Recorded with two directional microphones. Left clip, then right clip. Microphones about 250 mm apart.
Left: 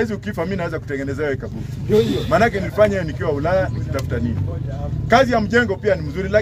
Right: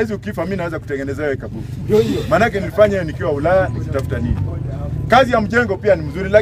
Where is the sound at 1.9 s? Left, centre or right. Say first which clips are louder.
Right 2 dB; right.